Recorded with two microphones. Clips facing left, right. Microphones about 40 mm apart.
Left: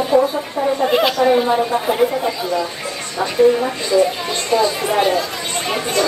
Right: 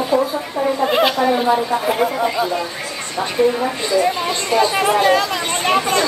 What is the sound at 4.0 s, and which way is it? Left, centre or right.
Speech, right.